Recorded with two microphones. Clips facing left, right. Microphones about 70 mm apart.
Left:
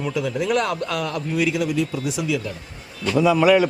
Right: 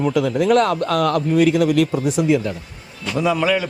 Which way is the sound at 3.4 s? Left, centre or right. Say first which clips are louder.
Left 4 dB; centre.